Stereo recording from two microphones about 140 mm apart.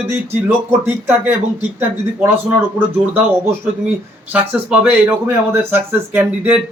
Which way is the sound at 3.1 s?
15° right (ahead or behind).